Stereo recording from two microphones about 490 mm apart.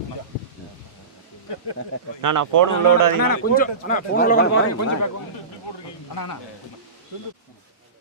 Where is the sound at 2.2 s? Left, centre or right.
Right.